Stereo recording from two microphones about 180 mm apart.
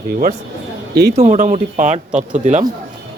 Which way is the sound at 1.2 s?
45° right (ahead or behind).